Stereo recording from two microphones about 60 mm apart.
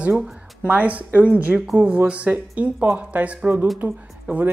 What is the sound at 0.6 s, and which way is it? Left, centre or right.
Speech, right.